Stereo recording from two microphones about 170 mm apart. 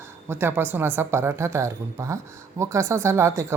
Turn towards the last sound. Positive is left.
turn(degrees=-15)  # may be behind; listen again after turning